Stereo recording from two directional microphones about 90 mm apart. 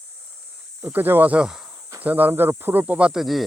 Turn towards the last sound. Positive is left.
turn(degrees=-10)  # may be behind; listen again after turning